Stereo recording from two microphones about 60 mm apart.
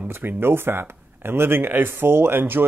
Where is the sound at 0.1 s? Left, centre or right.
Right.